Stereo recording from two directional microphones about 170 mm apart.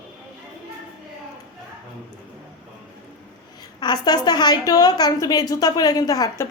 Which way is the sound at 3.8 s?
25° left (ahead or behind).